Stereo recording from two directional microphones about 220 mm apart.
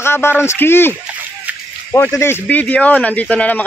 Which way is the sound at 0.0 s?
10° left (ahead or behind).